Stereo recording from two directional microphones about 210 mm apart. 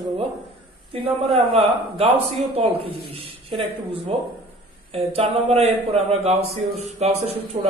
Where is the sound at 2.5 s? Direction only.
25° right (ahead or behind).